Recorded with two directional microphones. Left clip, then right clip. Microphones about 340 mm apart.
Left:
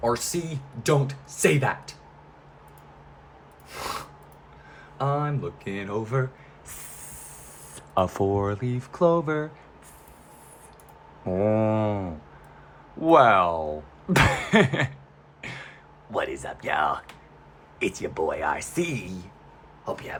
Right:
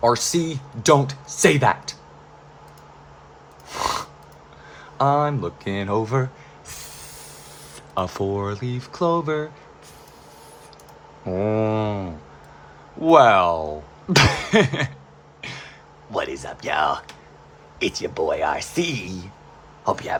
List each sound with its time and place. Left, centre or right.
0.0 s speech: centre
3.7 s snort: right
4.9 s speech: centre
7.9 s speech: centre
11.3 s speech: centre
15.4 s cough: centre
16.1 s speech: centre
19.8 s speech: right